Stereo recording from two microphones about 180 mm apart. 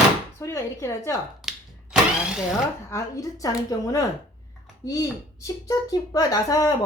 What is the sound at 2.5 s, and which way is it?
Speech, 20° left (ahead or behind).